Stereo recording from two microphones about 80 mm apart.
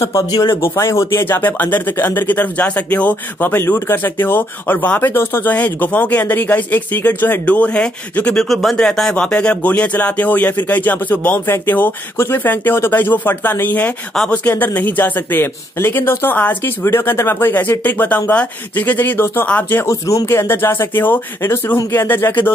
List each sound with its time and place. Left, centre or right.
0.3 s speech: left; by 8.5 s centre
8.5 s speech: centre; by 19.8 s left
19.8 s speech: left